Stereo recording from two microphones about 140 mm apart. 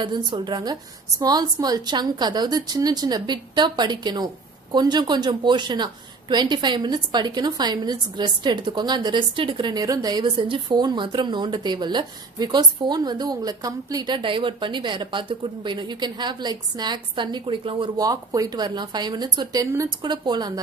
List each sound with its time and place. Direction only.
0.0 s a woman's voice: 35° right (ahead or behind)